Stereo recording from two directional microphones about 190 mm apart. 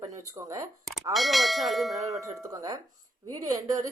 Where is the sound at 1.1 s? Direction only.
Centre (ahead or behind).